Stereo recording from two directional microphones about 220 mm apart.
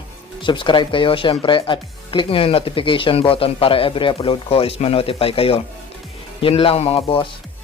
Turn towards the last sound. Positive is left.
turn(degrees=25)  # may be behind; listen again after turning